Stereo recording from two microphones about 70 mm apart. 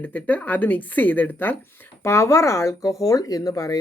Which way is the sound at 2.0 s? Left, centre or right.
Left.